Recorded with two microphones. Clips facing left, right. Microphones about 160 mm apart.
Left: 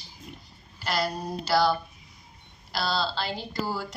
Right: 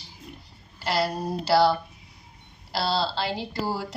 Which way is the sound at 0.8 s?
30° right (ahead or behind).